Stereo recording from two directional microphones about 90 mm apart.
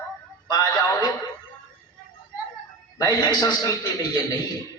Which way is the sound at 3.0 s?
50° left (ahead or behind).